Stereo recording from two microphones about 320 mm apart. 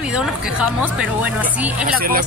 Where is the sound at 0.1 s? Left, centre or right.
Centre.